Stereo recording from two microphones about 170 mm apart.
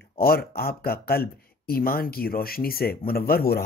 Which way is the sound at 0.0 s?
65° left (ahead or behind).